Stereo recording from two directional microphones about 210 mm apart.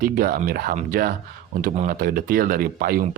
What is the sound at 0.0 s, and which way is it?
Speech, 45° right (ahead or behind).